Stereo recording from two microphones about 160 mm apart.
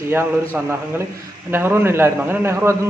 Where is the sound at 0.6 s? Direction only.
10° right (ahead or behind).